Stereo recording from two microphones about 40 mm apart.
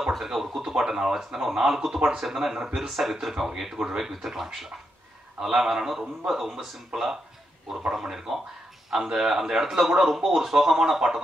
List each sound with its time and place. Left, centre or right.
0.2 s speech: centre
2.9 s speech: centre